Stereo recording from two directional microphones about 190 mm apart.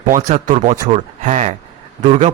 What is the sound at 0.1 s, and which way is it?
A man's voice, 35° right (ahead or behind).